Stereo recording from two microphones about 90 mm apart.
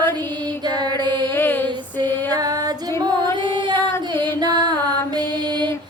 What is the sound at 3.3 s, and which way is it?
Female singing, 65° right (ahead or behind).